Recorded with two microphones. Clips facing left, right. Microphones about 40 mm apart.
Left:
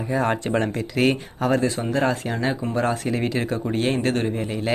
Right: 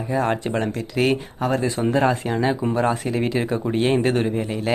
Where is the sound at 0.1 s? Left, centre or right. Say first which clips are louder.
Even; centre.